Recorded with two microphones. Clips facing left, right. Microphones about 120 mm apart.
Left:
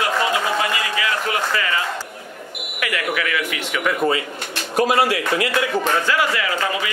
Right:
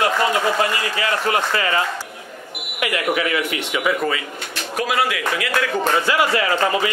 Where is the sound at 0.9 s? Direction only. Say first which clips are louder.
Right 2 dB; 40° right (ahead or behind).